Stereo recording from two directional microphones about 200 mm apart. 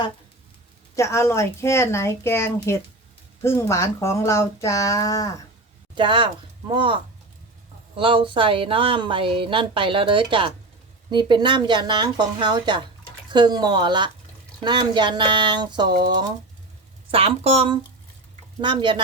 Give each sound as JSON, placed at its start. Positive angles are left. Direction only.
{"t": 0.9, "sound": "speech", "side_deg": 15}
{"t": 5.9, "sound": "speech", "side_deg": -25}